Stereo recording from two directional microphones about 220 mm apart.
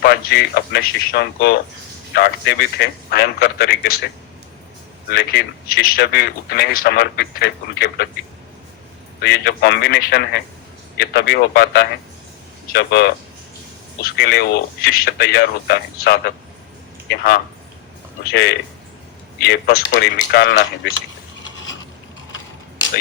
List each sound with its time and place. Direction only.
0.0 s speech: 45° left (ahead or behind)
9.2 s speech: 45° left (ahead or behind)
21.6 s pulleys: 60° left (ahead or behind)